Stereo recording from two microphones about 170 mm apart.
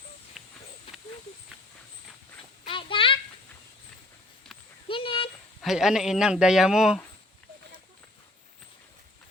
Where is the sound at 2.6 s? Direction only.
30° left (ahead or behind).